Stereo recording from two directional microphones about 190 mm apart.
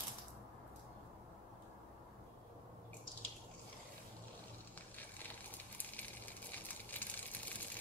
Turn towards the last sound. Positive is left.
turn(degrees=10)  # may be behind; listen again after turning